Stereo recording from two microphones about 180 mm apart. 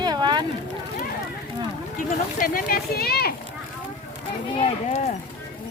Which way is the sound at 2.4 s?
50° left (ahead or behind).